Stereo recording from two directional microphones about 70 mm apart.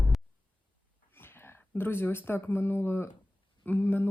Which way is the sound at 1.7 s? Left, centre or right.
Left.